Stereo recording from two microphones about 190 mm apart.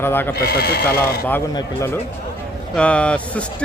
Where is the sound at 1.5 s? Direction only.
15° left (ahead or behind).